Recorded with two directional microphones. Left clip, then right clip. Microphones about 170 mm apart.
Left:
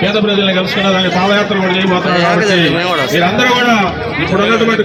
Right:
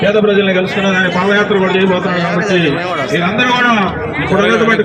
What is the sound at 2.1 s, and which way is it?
Speech, 30° left (ahead or behind).